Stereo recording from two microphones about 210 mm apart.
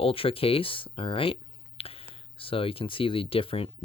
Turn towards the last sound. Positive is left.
turn(degrees=25)  # may be behind; listen again after turning